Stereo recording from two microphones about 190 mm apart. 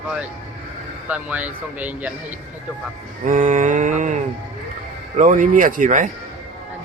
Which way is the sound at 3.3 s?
45° right (ahead or behind).